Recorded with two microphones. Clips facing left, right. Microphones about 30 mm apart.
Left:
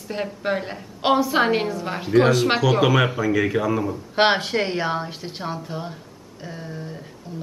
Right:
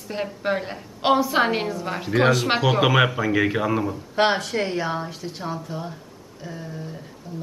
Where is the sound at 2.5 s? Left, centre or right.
Centre.